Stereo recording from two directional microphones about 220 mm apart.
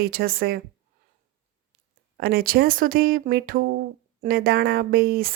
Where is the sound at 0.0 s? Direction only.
40° right (ahead or behind).